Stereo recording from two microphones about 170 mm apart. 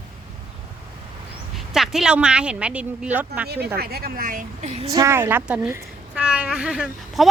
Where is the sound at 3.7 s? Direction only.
65° right (ahead or behind).